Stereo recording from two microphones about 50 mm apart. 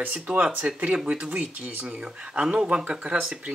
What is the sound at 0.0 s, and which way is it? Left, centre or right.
Speech, right.